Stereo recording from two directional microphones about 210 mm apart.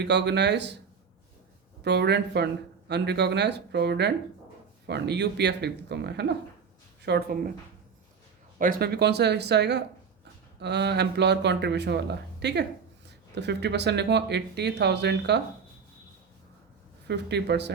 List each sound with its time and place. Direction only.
0.0 s speech: 55° right (ahead or behind)
1.8 s speech: 55° right (ahead or behind)
8.5 s speech: 40° right (ahead or behind)
17.1 s speech: 55° right (ahead or behind)